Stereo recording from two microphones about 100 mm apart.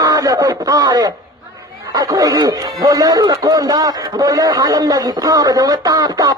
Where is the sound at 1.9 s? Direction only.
40° right (ahead or behind).